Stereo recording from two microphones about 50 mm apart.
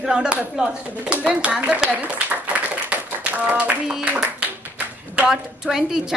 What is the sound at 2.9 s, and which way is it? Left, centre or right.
Tap, right.